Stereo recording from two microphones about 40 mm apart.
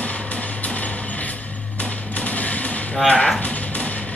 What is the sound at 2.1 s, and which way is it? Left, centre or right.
Music, left.